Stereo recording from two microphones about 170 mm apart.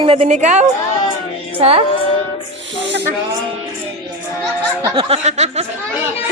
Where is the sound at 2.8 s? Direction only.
90° right.